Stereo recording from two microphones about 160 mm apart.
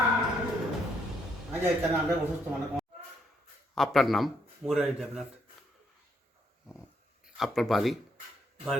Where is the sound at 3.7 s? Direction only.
Centre (ahead or behind).